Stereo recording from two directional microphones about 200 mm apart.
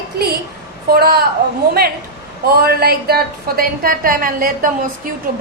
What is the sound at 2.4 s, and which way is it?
A woman's voice, 50° right (ahead or behind).